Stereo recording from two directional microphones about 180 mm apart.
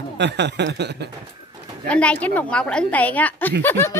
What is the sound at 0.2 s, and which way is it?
Speech, 75° right (ahead or behind).